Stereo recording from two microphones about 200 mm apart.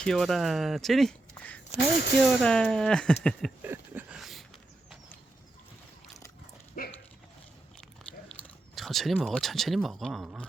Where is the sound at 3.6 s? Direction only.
10° right (ahead or behind).